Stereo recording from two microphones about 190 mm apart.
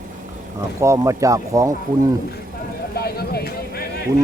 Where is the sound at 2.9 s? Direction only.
55° left (ahead or behind).